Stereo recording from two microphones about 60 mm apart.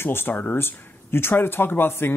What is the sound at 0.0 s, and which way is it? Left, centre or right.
Speech, left.